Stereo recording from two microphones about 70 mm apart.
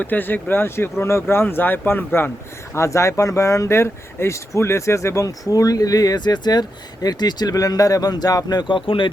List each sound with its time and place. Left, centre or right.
0.0 s speech: left
2.7 s speech: left